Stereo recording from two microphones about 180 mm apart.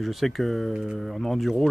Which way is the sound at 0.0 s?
Centre (ahead or behind).